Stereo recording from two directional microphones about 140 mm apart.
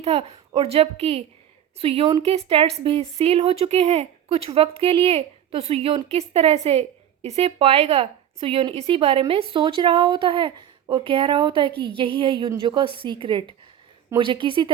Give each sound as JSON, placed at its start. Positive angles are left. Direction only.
{"t": 0.0, "sound": "a woman's voice", "side_deg": -45}